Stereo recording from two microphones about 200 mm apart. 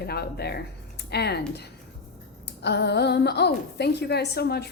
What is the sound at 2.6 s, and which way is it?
A woman's voice, 55° left (ahead or behind).